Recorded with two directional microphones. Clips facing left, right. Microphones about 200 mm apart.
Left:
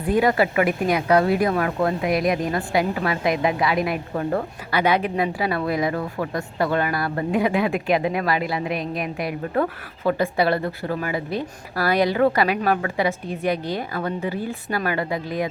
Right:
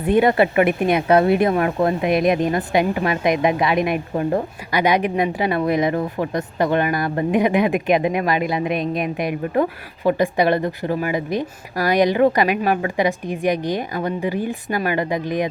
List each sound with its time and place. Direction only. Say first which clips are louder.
0.0 s speech: right 3 dB; 25° right (ahead or behind)